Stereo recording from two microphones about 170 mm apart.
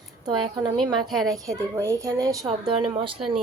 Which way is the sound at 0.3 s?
25° right (ahead or behind).